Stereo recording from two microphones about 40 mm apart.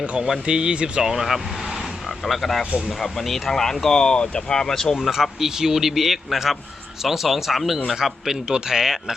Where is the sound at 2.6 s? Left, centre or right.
Centre.